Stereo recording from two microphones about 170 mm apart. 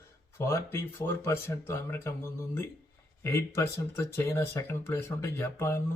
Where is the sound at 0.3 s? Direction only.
15° left (ahead or behind).